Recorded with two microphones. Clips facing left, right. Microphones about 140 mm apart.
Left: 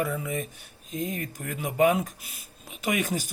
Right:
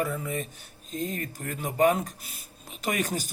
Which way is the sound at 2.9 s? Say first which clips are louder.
Left 2 dB; 40° right (ahead or behind).